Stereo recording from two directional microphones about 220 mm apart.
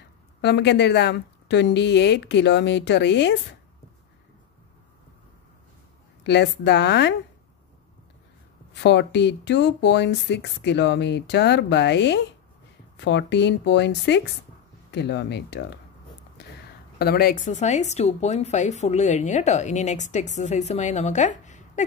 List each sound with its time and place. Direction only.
0.4 s speech: 50° left (ahead or behind)
6.2 s speech: 50° left (ahead or behind)
8.7 s speech: 50° left (ahead or behind)
17.0 s speech: 45° left (ahead or behind)